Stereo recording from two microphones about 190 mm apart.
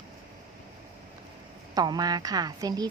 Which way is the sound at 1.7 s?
20° right (ahead or behind).